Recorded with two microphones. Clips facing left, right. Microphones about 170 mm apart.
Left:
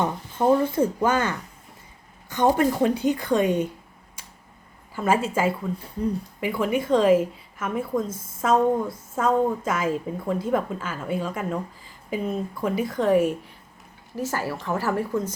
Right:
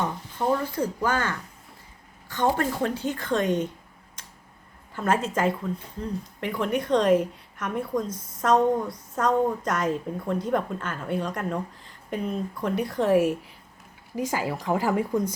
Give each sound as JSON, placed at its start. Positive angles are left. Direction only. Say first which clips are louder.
{"t": 0.5, "sound": "speech", "louder": "left 6 dB", "side_deg": 25}
{"t": 2.6, "sound": "speech", "louder": "left 5 dB", "side_deg": 15}
{"t": 4.9, "sound": "a woman's voice", "louder": "left 2 dB", "side_deg": 5}
{"t": 14.2, "sound": "speech", "louder": "even", "side_deg": -15}